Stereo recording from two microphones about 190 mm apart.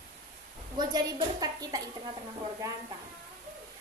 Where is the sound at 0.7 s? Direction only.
20° right (ahead or behind).